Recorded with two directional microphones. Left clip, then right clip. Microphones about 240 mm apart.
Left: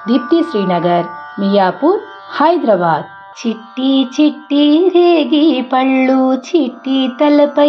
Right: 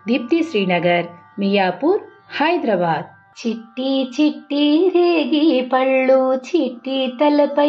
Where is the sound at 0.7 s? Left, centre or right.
Left.